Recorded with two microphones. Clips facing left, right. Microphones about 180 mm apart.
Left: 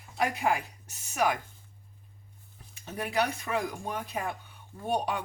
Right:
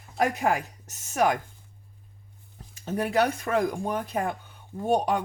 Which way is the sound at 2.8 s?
45° right (ahead or behind).